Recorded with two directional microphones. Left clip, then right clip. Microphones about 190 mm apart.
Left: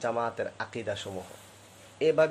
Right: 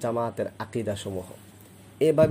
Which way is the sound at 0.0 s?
35° right (ahead or behind).